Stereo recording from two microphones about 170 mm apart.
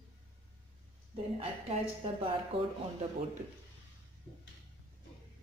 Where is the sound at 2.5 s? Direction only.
35° right (ahead or behind).